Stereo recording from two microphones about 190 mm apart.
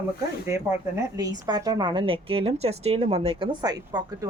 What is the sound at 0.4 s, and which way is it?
A woman's voice, 15° right (ahead or behind).